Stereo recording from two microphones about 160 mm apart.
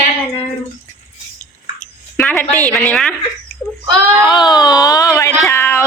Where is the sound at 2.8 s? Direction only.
5° left (ahead or behind).